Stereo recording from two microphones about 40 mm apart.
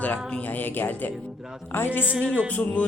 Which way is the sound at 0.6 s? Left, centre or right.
Left.